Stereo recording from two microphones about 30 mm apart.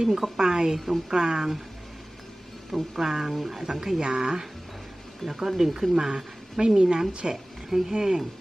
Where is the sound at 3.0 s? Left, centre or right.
Centre.